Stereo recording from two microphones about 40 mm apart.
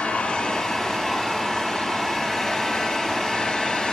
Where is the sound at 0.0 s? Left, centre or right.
Left.